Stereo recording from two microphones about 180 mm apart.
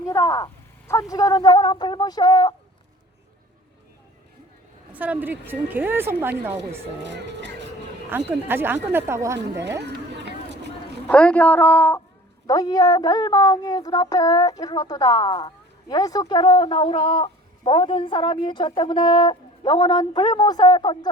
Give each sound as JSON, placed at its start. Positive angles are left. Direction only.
{"t": 0.0, "sound": "speech", "side_deg": 15}
{"t": 4.9, "sound": "a woman's voice", "side_deg": -10}
{"t": 7.0, "sound": "speech", "side_deg": -75}
{"t": 8.1, "sound": "a woman's voice", "side_deg": -10}
{"t": 9.8, "sound": "a sound", "side_deg": -70}
{"t": 11.1, "sound": "a man's voice", "side_deg": 5}